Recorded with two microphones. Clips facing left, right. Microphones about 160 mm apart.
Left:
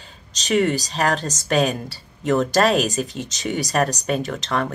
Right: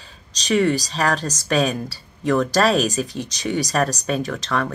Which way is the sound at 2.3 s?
25° left (ahead or behind).